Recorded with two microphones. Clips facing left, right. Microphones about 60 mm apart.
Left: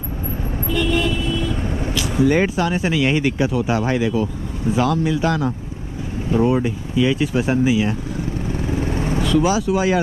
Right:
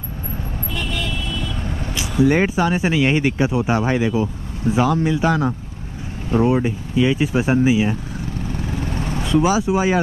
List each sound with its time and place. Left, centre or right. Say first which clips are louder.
0.7 s vehicle: left 7 dB; left
2.2 s speech: right 1 dB; centre
8.5 s vehicle: left 4 dB; left
9.4 s speech: right 3 dB; centre